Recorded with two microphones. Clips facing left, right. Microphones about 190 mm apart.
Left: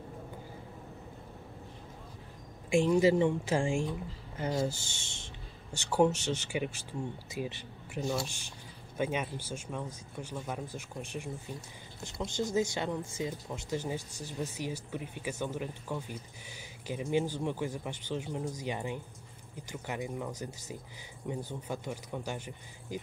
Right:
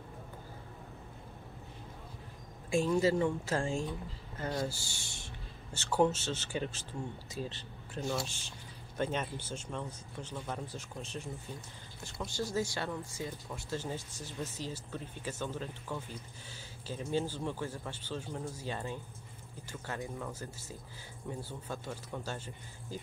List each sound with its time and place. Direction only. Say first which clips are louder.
2.7 s speech: left 4 dB; 15° left (ahead or behind)